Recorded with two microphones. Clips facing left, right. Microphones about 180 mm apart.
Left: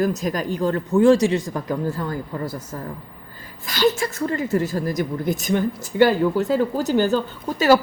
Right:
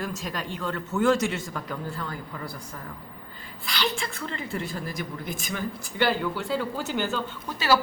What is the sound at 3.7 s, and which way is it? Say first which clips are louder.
A woman's voice: left 10 dB; 45° left (ahead or behind).